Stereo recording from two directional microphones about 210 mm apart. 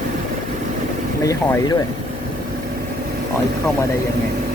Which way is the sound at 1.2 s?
15° left (ahead or behind).